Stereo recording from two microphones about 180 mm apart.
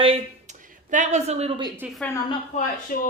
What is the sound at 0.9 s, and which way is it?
Speech, 40° right (ahead or behind).